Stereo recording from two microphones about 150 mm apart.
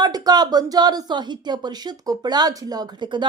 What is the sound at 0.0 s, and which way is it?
A woman's voice, 25° right (ahead or behind).